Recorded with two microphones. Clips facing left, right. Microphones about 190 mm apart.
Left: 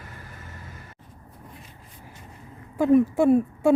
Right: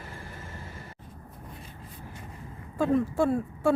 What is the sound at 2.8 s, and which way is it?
Speech, 15° left (ahead or behind).